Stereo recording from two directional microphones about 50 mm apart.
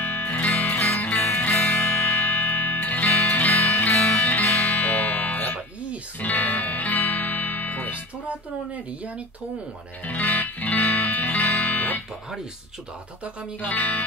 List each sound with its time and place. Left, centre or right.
0.0 s music: left
10.0 s music: left
13.6 s speech: left